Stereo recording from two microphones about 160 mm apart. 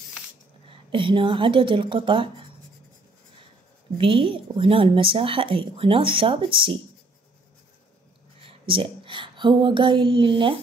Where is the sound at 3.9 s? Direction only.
35° right (ahead or behind).